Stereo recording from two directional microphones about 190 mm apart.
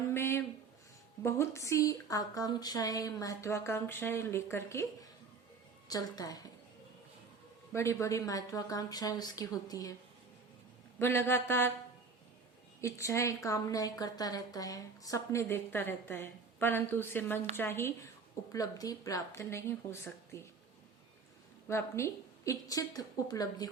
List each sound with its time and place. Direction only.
0.1 s a woman's voice: 15° left (ahead or behind)
5.9 s speech: 20° left (ahead or behind)
7.7 s speech: 15° left (ahead or behind)
11.0 s a woman's voice: 10° left (ahead or behind)
12.8 s a woman's voice: 15° left (ahead or behind)
21.7 s speech: 15° left (ahead or behind)